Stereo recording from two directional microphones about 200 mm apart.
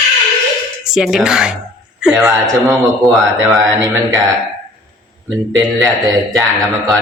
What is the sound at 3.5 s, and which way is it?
Speech, 15° right (ahead or behind).